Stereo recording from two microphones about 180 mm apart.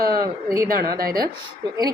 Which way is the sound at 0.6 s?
55° right (ahead or behind).